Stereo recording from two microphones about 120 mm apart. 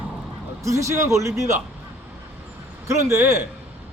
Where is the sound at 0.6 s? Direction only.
25° right (ahead or behind).